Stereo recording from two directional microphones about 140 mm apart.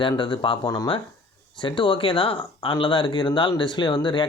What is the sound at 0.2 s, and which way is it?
Speech, 35° left (ahead or behind).